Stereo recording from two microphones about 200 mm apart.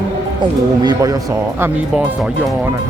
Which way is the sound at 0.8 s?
20° right (ahead or behind).